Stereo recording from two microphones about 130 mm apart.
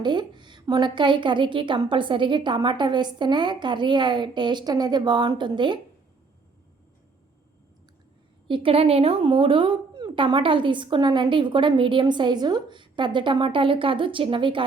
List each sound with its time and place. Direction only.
0.0 s speech: 35° right (ahead or behind)
8.4 s speech: 45° right (ahead or behind)